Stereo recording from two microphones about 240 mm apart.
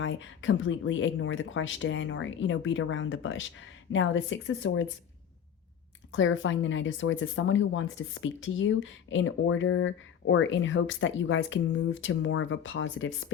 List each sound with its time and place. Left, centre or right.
0.0 s speech: left
6.1 s speech: left